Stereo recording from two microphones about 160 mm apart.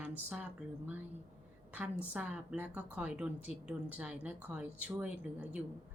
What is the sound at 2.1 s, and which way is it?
Speech, 10° right (ahead or behind).